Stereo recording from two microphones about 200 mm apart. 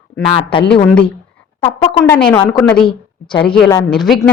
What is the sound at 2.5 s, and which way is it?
Speech, 5° left (ahead or behind).